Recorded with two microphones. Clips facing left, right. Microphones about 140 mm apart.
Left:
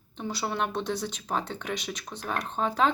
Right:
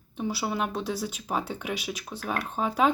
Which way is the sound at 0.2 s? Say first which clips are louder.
Right 1 dB; 5° right (ahead or behind).